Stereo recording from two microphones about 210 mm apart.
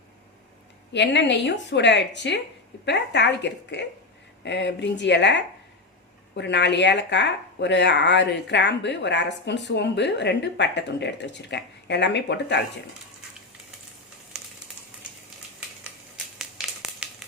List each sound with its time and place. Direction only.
0.9 s speech: 55° left (ahead or behind)
14.3 s a sound: 5° right (ahead or behind)
15.8 s crumpling: 5° right (ahead or behind)